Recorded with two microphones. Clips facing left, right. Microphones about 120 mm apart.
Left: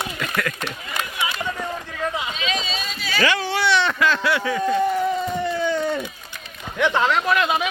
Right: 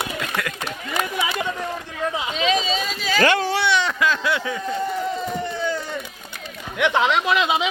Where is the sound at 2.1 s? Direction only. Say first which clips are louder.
Right 5 dB; 15° right (ahead or behind).